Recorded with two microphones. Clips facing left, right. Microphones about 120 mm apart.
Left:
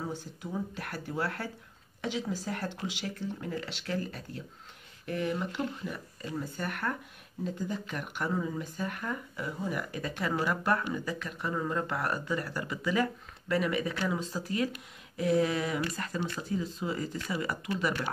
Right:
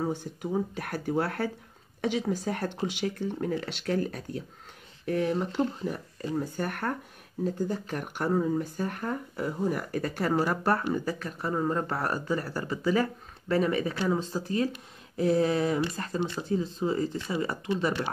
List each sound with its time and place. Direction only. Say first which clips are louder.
0.5 s speech: right 6 dB; 50° right (ahead or behind)
5.1 s speech: right 5 dB; 40° right (ahead or behind)